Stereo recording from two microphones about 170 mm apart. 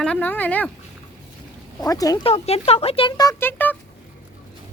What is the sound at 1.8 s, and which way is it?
Speech, 20° left (ahead or behind).